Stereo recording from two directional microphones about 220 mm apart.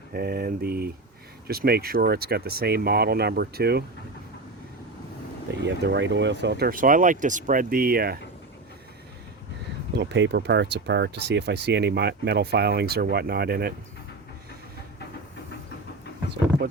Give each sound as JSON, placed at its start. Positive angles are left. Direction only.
{"t": 0.1, "sound": "speech", "side_deg": -45}
{"t": 5.6, "sound": "speech", "side_deg": -50}
{"t": 9.9, "sound": "speech", "side_deg": -50}